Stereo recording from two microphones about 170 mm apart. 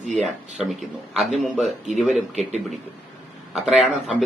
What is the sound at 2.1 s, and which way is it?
Speech, 40° right (ahead or behind).